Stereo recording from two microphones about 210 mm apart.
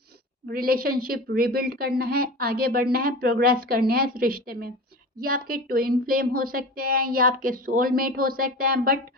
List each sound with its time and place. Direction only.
0.4 s a woman's voice: 45° right (ahead or behind)